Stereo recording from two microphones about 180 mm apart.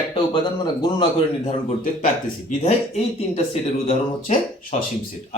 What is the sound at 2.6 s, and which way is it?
Speech, 40° left (ahead or behind).